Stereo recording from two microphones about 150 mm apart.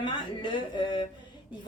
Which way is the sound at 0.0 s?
30° left (ahead or behind).